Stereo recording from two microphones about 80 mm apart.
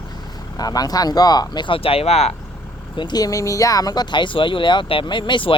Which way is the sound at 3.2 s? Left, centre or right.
Left.